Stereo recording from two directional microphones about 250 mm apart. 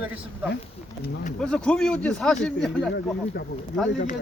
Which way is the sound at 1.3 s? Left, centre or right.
Centre.